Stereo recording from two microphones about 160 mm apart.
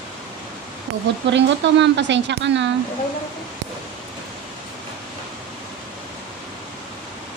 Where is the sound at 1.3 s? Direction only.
90° right.